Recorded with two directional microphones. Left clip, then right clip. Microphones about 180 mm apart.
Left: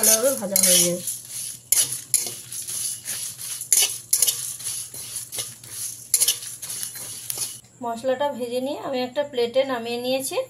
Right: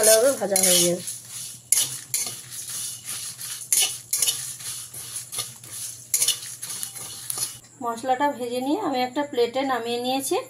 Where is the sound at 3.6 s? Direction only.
Centre (ahead or behind).